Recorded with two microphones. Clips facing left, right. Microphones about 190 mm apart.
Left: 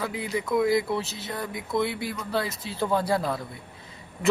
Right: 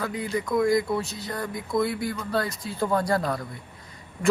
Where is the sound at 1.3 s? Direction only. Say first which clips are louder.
Right 1 dB; centre (ahead or behind).